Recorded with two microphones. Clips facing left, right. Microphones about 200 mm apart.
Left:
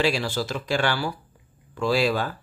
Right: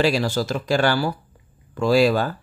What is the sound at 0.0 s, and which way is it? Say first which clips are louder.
Speech: right 4 dB; 40° right (ahead or behind).